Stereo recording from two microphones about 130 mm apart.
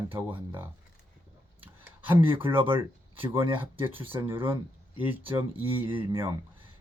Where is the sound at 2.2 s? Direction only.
40° right (ahead or behind).